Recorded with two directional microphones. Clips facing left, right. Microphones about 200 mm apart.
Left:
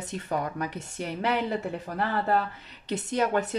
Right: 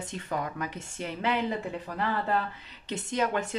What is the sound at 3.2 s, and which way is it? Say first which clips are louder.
Speech: left 3 dB; 40° left (ahead or behind).